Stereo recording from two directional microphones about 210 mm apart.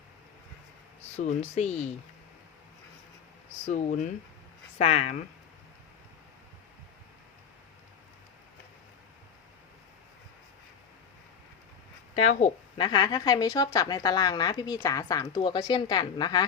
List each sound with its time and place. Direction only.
1.5 s speech: 30° left (ahead or behind)
3.7 s speech: 35° left (ahead or behind)
12.2 s a woman's voice: 35° left (ahead or behind); by 16.5 s 20° left (ahead or behind)